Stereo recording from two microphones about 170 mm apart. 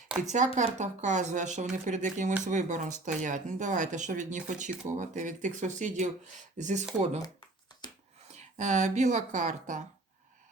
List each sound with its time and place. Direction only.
0.3 s speech: 45° right (ahead or behind)
8.3 s speech: 40° right (ahead or behind)